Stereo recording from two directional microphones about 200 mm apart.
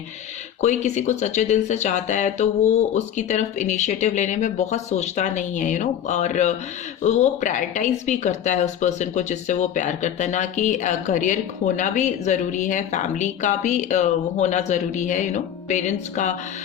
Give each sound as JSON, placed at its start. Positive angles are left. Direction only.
{"t": 0.6, "sound": "speech", "side_deg": 35}